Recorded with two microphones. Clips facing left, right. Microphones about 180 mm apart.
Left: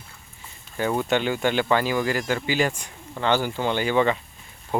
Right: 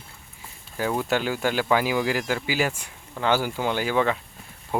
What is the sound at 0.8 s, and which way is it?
Speech, centre (ahead or behind).